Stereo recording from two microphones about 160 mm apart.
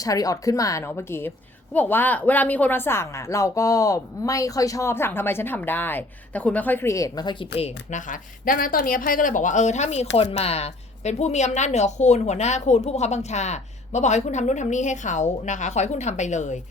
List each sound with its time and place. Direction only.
0.0 s a woman's voice: 20° left (ahead or behind)
7.5 s a woman's voice: 45° left (ahead or behind)